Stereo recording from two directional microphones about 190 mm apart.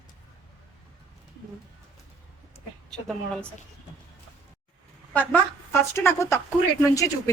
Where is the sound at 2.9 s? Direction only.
Centre (ahead or behind).